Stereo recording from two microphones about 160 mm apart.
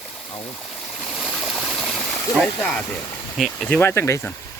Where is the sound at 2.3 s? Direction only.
5° left (ahead or behind).